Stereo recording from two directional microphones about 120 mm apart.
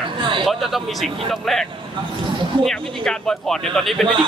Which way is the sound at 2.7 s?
5° left (ahead or behind).